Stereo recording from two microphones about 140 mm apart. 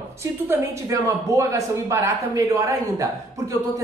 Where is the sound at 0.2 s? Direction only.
20° right (ahead or behind).